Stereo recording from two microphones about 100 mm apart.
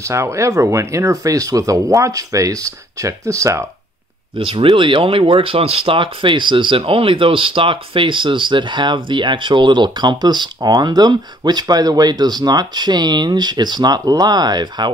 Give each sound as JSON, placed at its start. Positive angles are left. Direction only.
{"t": 0.0, "sound": "speech", "side_deg": -30}
{"t": 4.4, "sound": "speech", "side_deg": -65}